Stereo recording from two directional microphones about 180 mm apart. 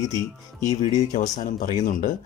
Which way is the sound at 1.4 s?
45° left (ahead or behind).